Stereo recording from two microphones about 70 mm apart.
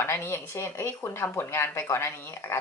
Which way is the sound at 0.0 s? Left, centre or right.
Left.